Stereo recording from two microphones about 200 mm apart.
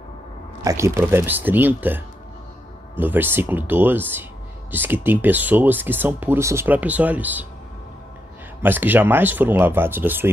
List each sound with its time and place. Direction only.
0.6 s speech: 15° right (ahead or behind)
8.6 s speech: 10° right (ahead or behind)